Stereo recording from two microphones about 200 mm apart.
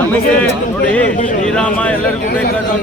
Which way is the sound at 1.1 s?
40° left (ahead or behind).